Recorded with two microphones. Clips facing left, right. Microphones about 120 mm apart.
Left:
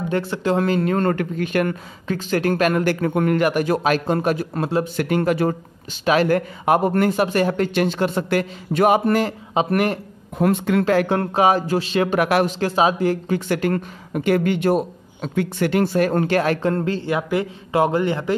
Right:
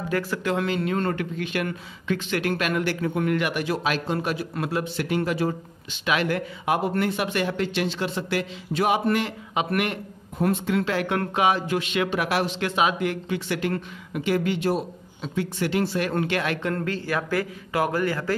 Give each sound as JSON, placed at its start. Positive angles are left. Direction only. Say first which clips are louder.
{"t": 0.1, "sound": "speech", "louder": "left 4 dB", "side_deg": 30}
{"t": 0.7, "sound": "speech", "louder": "left 6 dB", "side_deg": 45}
{"t": 6.0, "sound": "speech", "louder": "left 7 dB", "side_deg": 40}
{"t": 10.4, "sound": "speech", "louder": "left 5 dB", "side_deg": 65}
{"t": 11.1, "sound": "speech", "louder": "left 5 dB", "side_deg": 35}
{"t": 12.2, "sound": "speech", "louder": "left 7 dB", "side_deg": 55}
{"t": 12.5, "sound": "speech", "louder": "left 5 dB", "side_deg": 35}